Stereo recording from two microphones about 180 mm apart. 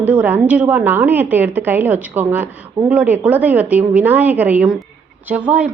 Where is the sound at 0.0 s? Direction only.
10° right (ahead or behind).